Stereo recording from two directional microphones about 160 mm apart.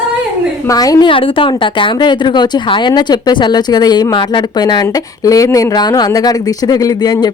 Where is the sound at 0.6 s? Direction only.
20° left (ahead or behind).